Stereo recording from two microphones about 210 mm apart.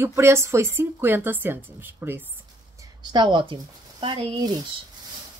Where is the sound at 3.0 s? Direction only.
20° right (ahead or behind).